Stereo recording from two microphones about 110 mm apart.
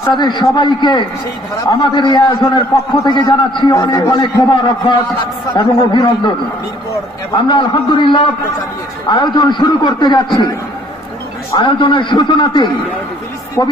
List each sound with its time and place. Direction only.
0.1 s a man's voice: 45° left (ahead or behind)
7.4 s a man's voice: 45° left (ahead or behind)
11.5 s a man's voice: 50° left (ahead or behind)